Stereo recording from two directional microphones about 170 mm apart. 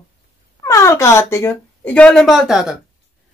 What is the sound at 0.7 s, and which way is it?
Wail, 15° left (ahead or behind).